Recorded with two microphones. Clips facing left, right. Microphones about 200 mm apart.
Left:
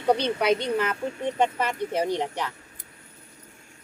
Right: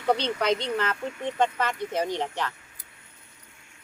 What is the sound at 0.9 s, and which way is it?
Speech, 35° left (ahead or behind).